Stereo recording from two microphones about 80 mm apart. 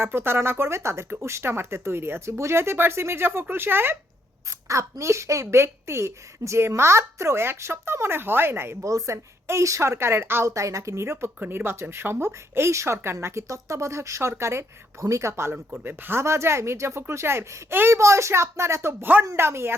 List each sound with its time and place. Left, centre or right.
0.0 s a woman's voice: right
4.4 s a woman's voice: right
8.8 s a woman's voice: right